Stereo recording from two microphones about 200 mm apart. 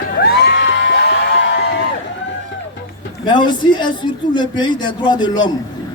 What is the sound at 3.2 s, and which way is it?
A man's voice, 20° left (ahead or behind).